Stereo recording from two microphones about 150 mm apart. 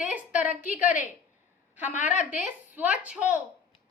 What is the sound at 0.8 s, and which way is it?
Speech, 60° left (ahead or behind).